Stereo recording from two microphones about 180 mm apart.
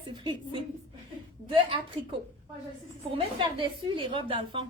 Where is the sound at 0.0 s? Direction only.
25° right (ahead or behind).